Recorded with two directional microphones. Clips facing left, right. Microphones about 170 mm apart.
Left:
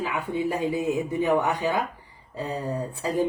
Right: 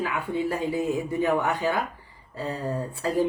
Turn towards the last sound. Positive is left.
turn(degrees=15)  # may be behind; listen again after turning